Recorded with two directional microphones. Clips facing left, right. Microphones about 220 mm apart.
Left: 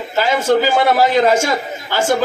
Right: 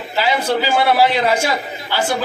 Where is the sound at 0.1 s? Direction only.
45° left (ahead or behind).